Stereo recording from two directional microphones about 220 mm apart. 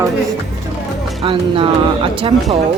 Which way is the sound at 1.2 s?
25° right (ahead or behind).